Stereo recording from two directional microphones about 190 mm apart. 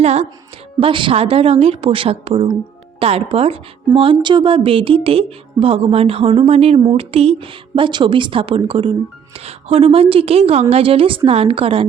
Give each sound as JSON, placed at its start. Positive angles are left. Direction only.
{"t": 0.0, "sound": "a woman's voice", "side_deg": -35}